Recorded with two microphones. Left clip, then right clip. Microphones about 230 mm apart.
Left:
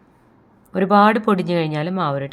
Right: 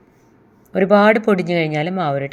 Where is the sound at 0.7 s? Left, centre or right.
Centre.